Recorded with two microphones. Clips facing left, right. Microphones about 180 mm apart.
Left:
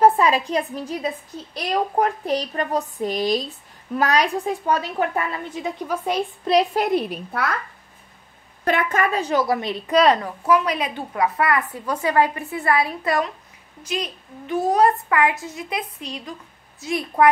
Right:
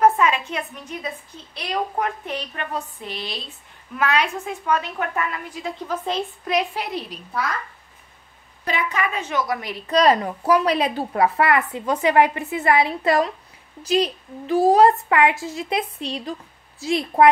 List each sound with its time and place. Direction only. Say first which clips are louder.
0.0 s a woman's voice: left 2 dB; 35° left (ahead or behind); by 6.2 s 10° left (ahead or behind)
6.4 s a woman's voice: left 7 dB; 35° left (ahead or behind); by 7.4 s 55° left (ahead or behind)
8.6 s a woman's voice: left 4 dB; 50° left (ahead or behind); by 9.8 s 25° left (ahead or behind)
9.8 s speech: even; 5° left (ahead or behind)
10.4 s a woman's voice: right 2 dB; 35° right (ahead or behind)